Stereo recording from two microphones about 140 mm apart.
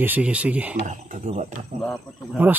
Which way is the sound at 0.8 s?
60° right (ahead or behind).